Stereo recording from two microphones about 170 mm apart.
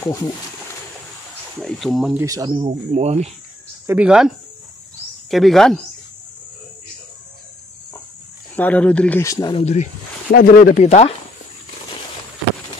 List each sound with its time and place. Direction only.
0.0 s speech: 20° left (ahead or behind)
1.6 s speech: centre (ahead or behind)
2.1 s speech: 20° right (ahead or behind)
2.9 s speech: 40° right (ahead or behind)
3.8 s speech: 10° right (ahead or behind)
5.3 s speech: centre (ahead or behind)
8.5 s speech: 10° left (ahead or behind)
9.2 s speech: 20° left (ahead or behind)
9.6 s speech: 40° left (ahead or behind)
10.3 s speech: 55° left (ahead or behind); by 11.1 s 40° left (ahead or behind)